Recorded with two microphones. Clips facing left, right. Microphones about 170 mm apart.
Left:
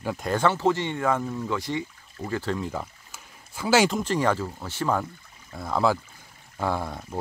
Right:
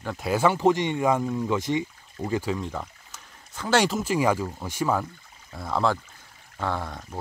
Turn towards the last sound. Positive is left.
turn(degrees=10)  # may be behind; listen again after turning